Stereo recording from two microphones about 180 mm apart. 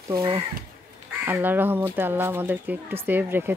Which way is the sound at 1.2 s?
10° right (ahead or behind).